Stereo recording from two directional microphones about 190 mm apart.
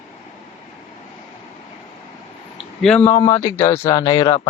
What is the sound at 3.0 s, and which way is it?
Speech, 15° left (ahead or behind).